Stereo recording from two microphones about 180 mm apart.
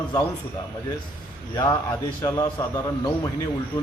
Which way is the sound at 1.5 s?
15° left (ahead or behind).